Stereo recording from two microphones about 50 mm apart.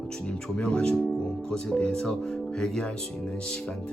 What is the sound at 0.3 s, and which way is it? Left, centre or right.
Speech, centre.